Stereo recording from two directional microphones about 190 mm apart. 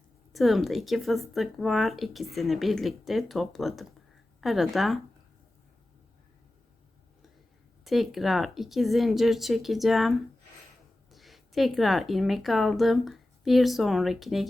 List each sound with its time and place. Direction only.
0.3 s speech: centre (ahead or behind)
7.9 s speech: centre (ahead or behind)